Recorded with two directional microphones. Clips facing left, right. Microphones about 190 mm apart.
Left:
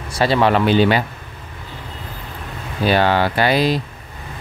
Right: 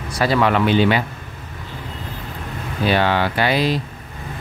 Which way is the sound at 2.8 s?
40° left (ahead or behind).